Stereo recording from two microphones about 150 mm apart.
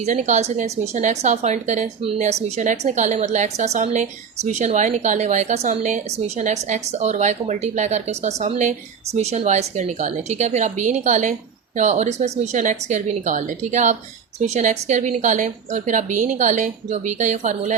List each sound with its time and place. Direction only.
0.0 s a woman's voice: 50° right (ahead or behind)